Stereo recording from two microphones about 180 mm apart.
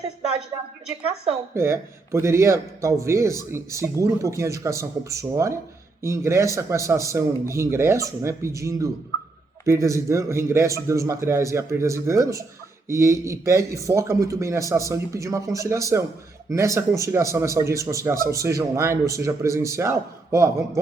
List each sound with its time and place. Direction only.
1.5 s a man's voice: 15° right (ahead or behind)